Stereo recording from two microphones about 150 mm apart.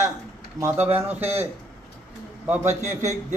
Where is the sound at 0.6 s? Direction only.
15° right (ahead or behind).